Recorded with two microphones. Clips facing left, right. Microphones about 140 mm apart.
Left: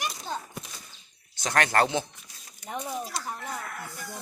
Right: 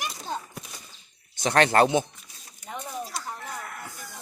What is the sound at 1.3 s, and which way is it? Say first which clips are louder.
Speech: right 4 dB; 25° right (ahead or behind).